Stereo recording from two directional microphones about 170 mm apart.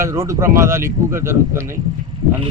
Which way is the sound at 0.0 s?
15° right (ahead or behind).